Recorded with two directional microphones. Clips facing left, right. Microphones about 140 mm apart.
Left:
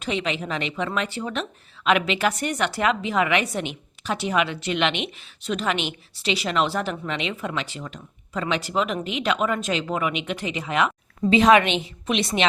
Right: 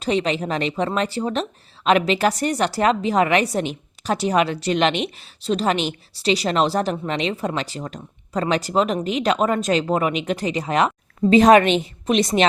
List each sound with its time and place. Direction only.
0.0 s a woman's voice: 40° right (ahead or behind)